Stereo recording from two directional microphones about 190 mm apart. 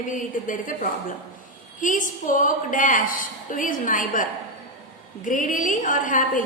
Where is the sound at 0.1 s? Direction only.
45° left (ahead or behind).